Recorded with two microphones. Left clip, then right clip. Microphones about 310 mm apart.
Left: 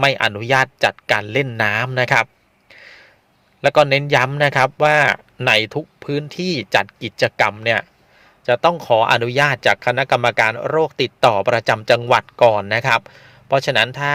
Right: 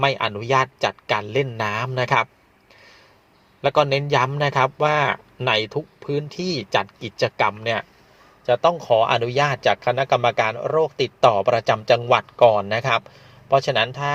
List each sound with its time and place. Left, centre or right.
0.0 s a man's voice: left
2.6 s a sound: left
3.6 s a man's voice: left